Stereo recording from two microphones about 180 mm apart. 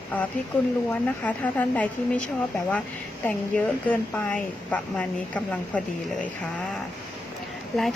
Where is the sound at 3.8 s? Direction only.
5° left (ahead or behind).